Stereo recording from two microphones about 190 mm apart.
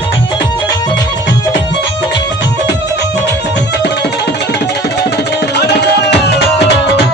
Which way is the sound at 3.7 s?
60° left (ahead or behind).